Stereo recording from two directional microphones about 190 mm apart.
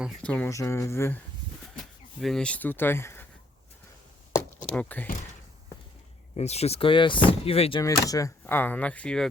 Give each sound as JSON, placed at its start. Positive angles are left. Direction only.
{"t": 0.0, "sound": "speech", "side_deg": 5}
{"t": 1.8, "sound": "speech", "side_deg": 0}
{"t": 4.3, "sound": "a sound", "side_deg": 10}
{"t": 6.3, "sound": "speech", "side_deg": 35}
{"t": 7.8, "sound": "speech", "side_deg": 20}